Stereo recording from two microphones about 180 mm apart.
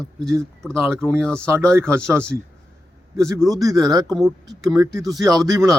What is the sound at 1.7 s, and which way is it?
Speech, 15° right (ahead or behind).